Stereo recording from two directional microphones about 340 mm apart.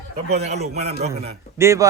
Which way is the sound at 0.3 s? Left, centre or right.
Centre.